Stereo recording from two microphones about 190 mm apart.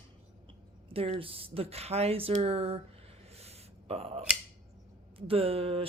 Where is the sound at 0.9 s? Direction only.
30° right (ahead or behind).